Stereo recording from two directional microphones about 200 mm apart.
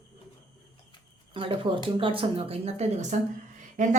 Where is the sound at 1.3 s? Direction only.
25° right (ahead or behind).